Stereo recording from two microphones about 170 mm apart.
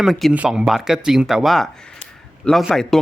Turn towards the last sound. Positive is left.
turn(degrees=0)  # may be behind; listen again after turning